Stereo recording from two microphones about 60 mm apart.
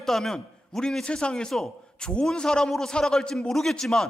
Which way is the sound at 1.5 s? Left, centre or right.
Centre.